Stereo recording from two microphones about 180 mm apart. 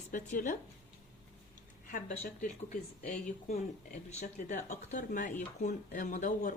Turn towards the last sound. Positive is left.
turn(degrees=45)  # may be behind; listen again after turning